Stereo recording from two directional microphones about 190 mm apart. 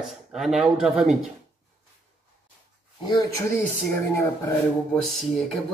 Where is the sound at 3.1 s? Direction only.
15° left (ahead or behind).